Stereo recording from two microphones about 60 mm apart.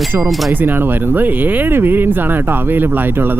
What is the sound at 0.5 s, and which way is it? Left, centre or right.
Speech, right.